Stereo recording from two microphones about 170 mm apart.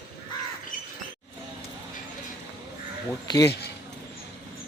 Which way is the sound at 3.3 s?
20° left (ahead or behind).